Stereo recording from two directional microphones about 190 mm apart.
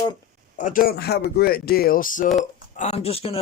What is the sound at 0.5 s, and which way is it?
Speech, 45° left (ahead or behind).